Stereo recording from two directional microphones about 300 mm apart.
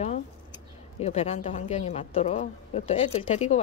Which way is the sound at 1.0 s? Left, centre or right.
Left.